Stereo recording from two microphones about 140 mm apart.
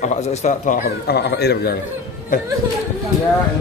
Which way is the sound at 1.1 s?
90° left.